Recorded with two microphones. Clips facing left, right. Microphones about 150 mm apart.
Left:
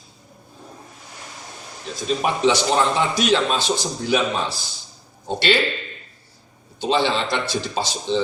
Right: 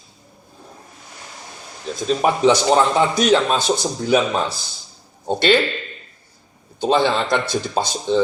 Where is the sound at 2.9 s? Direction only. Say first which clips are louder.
Right 4 dB; 45° right (ahead or behind).